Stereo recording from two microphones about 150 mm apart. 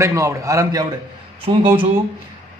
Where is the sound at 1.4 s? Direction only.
35° right (ahead or behind).